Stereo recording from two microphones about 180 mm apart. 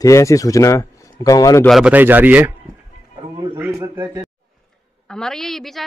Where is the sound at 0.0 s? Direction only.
15° left (ahead or behind).